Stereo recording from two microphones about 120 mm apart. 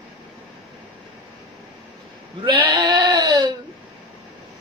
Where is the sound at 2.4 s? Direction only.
40° right (ahead or behind).